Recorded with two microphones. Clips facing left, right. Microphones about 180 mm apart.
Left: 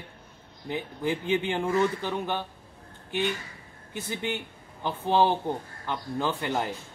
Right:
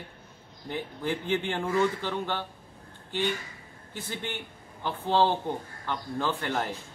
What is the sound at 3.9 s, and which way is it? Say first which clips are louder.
Speech: left 4 dB; 15° left (ahead or behind).